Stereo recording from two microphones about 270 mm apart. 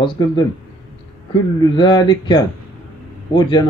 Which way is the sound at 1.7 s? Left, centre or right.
Centre.